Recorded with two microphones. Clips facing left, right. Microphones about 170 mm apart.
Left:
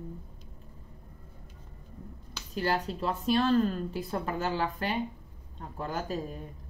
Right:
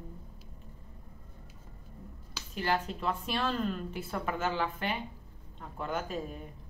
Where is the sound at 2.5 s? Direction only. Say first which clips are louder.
Left 2 dB; 35° left (ahead or behind).